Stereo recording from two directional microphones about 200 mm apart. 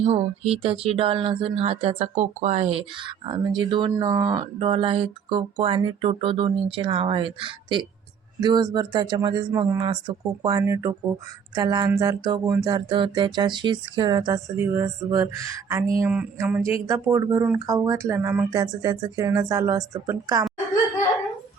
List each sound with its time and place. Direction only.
0.0 s speech: 30° right (ahead or behind)